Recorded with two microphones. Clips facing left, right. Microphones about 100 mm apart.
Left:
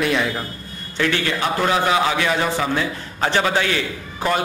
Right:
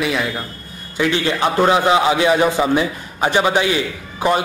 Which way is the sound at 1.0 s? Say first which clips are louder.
Right 3 dB; 20° right (ahead or behind).